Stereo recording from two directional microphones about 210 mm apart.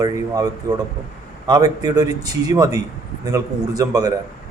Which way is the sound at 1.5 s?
20° right (ahead or behind).